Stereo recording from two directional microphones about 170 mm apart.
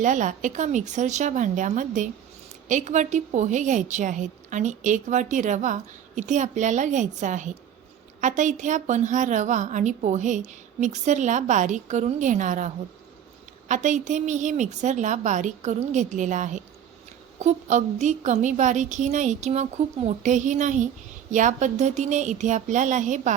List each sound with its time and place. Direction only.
0.0 s a woman's voice: 50° right (ahead or behind)